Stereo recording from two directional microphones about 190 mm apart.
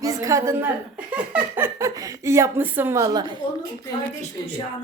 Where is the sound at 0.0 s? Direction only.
15° right (ahead or behind).